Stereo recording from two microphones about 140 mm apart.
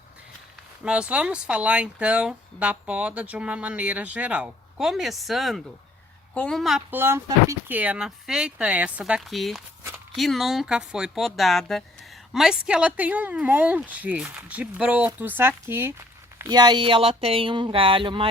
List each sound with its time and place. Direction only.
0.9 s speech: 10° right (ahead or behind)
6.9 s speech: 15° right (ahead or behind)
16.5 s speech: 30° right (ahead or behind)